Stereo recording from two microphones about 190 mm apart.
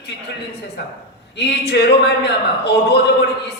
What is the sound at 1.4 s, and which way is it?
Speech, 60° left (ahead or behind).